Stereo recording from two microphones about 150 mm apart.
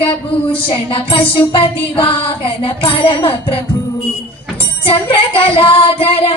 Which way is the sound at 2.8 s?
35° left (ahead or behind).